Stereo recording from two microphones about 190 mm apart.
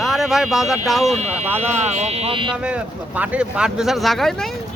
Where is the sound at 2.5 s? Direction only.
5° right (ahead or behind).